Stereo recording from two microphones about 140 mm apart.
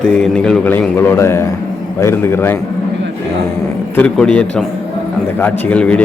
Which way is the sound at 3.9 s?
5° left (ahead or behind).